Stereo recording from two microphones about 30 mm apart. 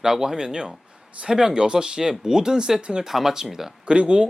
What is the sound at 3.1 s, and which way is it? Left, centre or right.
Speech, centre.